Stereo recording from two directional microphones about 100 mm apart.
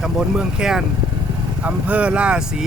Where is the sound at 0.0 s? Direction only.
5° right (ahead or behind).